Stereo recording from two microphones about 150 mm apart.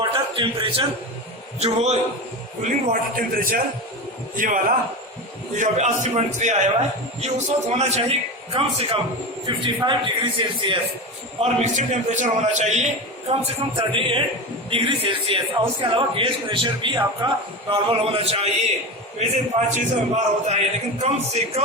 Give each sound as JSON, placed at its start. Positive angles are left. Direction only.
{"t": 0.1, "sound": "a sound", "side_deg": -35}
{"t": 1.5, "sound": "a man's voice", "side_deg": -45}
{"t": 2.6, "sound": "a man's voice", "side_deg": -65}
{"t": 5.5, "sound": "a man's voice", "side_deg": -50}
{"t": 11.3, "sound": "a man's voice", "side_deg": -50}